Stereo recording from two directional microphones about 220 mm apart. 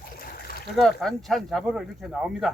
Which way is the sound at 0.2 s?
45° left (ahead or behind).